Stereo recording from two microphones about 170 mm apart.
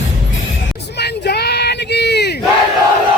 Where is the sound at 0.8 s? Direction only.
80° left.